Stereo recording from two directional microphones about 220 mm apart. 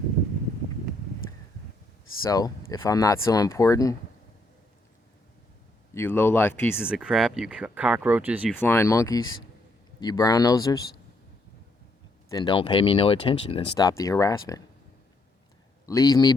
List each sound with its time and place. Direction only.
2.2 s speech: 15° left (ahead or behind)
5.9 s speech: 10° left (ahead or behind)
6.8 s speech: 5° right (ahead or behind)
8.5 s speech: 10° left (ahead or behind)
12.3 s speech: 20° left (ahead or behind)
15.9 s speech: 15° left (ahead or behind)